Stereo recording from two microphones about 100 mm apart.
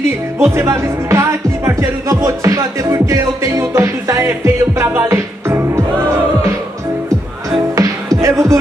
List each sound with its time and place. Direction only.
0.4 s music: 25° right (ahead or behind)
7.7 s music: 35° right (ahead or behind)